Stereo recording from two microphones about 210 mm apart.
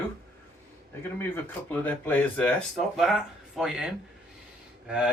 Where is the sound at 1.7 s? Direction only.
10° left (ahead or behind).